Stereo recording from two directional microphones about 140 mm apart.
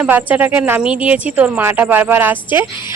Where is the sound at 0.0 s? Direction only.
10° right (ahead or behind).